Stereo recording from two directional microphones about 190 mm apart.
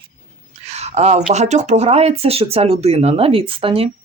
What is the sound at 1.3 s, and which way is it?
Speech, 35° right (ahead or behind).